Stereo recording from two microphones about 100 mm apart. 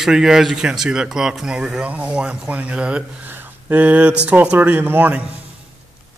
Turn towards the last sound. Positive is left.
turn(degrees=-20)  # may be behind; listen again after turning